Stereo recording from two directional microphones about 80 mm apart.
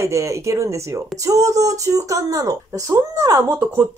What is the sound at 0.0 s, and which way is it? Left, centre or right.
Speech, right.